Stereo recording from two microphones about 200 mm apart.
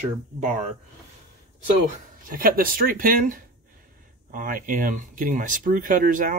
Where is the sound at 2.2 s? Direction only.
45° right (ahead or behind).